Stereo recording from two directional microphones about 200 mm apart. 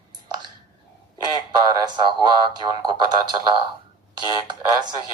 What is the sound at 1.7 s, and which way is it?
Speech, 20° right (ahead or behind).